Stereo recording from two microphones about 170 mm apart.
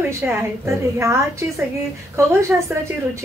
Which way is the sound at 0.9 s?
15° right (ahead or behind).